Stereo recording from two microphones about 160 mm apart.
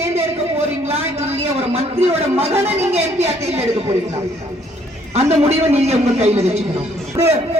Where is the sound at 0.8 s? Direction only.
40° right (ahead or behind).